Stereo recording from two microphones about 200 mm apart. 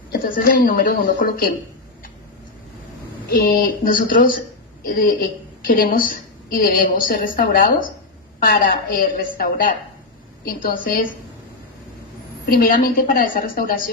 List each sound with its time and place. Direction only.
0.1 s a woman's voice: 45° left (ahead or behind)
3.3 s a woman's voice: 45° left (ahead or behind)
12.5 s a woman's voice: 45° left (ahead or behind)